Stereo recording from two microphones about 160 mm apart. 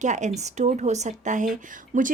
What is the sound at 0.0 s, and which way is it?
Speech, 50° right (ahead or behind).